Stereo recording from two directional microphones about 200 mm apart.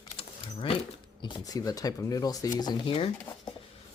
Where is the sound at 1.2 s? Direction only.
20° left (ahead or behind).